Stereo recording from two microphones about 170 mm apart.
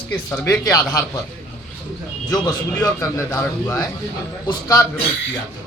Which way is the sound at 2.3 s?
25° left (ahead or behind).